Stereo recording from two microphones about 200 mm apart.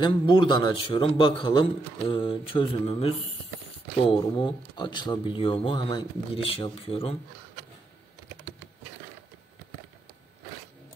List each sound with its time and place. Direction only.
0.0 s a man's voice: 20° left (ahead or behind)